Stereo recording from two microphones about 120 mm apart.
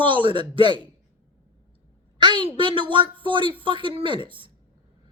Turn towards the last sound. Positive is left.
turn(degrees=-45)  # may be behind; listen again after turning